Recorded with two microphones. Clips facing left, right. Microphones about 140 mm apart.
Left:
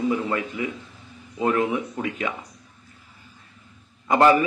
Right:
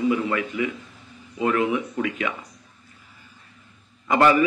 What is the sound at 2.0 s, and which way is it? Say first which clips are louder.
Speech: right 1 dB; 30° left (ahead or behind).